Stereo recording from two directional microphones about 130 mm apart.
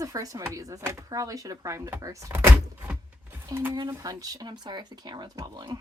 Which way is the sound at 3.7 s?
30° right (ahead or behind).